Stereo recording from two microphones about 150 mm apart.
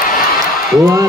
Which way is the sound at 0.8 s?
20° right (ahead or behind).